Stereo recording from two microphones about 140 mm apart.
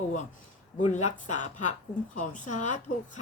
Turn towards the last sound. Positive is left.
turn(degrees=60)  # may be behind; listen again after turning